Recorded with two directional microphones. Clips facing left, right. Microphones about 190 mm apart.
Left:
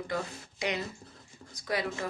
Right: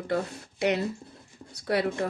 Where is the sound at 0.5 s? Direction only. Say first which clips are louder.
Right 7 dB; 60° right (ahead or behind).